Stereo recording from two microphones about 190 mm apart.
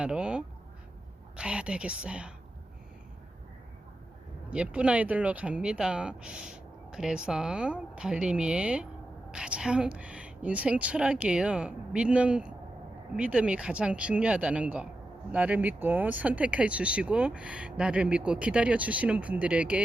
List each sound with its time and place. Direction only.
0.0 s speech: 5° right (ahead or behind)
4.5 s speech: 5° right (ahead or behind)